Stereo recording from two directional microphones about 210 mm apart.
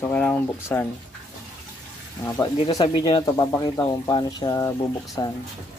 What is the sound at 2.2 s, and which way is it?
Speech, 15° left (ahead or behind).